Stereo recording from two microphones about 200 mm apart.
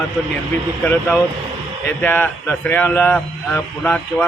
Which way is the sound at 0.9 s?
5° left (ahead or behind).